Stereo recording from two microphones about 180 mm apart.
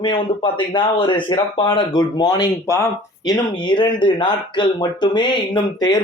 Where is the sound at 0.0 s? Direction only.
25° left (ahead or behind).